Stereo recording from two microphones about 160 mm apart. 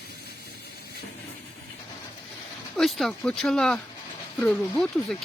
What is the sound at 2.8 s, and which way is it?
Speech, centre (ahead or behind).